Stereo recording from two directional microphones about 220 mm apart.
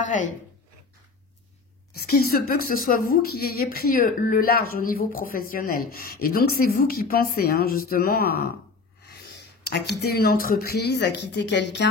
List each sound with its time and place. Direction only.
0.0 s speech: 35° left (ahead or behind)
2.0 s speech: 45° left (ahead or behind)